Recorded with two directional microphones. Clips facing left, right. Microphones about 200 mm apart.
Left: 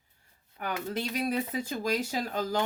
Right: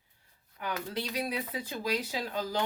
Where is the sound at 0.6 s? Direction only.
50° left (ahead or behind).